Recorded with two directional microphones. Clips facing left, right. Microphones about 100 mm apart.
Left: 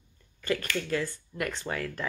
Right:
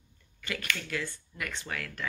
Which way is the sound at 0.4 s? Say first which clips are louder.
Left 6 dB; 35° left (ahead or behind).